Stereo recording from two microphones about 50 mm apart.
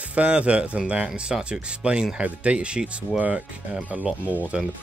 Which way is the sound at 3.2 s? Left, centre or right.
Right.